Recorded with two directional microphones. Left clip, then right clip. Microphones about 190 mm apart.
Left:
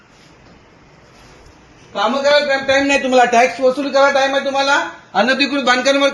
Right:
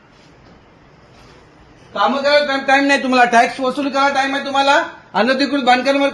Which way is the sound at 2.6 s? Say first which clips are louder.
Right 1 dB; 55° right (ahead or behind).